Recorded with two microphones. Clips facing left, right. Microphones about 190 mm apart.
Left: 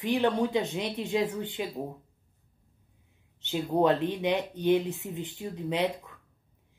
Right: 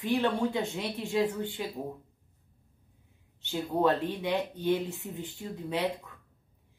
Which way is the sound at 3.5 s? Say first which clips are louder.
Left 2 dB; 20° left (ahead or behind).